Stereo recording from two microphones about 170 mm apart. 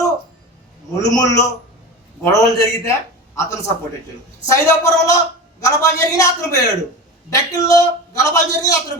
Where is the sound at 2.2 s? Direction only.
20° left (ahead or behind).